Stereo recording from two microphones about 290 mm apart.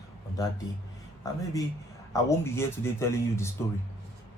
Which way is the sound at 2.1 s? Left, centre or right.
Centre.